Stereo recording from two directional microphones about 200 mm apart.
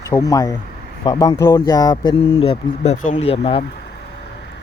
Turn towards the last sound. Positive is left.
turn(degrees=30)  # may be behind; listen again after turning